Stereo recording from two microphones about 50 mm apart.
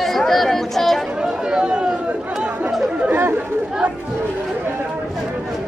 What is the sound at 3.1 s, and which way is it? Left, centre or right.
Chatter, right.